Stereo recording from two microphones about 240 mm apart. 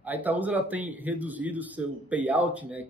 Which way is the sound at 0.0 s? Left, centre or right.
Centre.